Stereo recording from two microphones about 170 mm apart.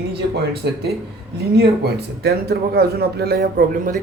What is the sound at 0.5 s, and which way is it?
A man's voice, 65° right (ahead or behind).